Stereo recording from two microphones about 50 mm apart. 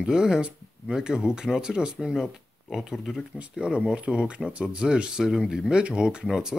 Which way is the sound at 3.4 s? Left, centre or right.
Right.